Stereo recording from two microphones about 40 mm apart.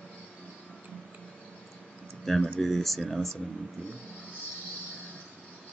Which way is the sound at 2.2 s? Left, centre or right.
Centre.